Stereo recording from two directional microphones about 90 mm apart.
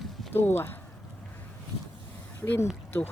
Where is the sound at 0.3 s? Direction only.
25° left (ahead or behind).